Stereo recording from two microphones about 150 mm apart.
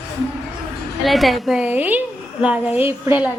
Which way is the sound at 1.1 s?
Centre (ahead or behind).